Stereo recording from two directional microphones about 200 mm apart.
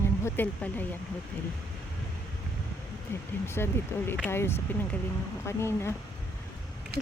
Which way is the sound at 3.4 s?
10° left (ahead or behind).